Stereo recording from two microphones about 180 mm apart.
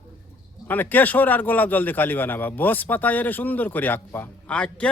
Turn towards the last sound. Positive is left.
turn(degrees=5)  # may be behind; listen again after turning